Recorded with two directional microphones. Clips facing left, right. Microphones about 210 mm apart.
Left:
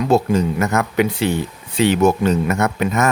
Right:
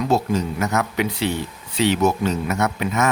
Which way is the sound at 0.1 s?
55° left (ahead or behind).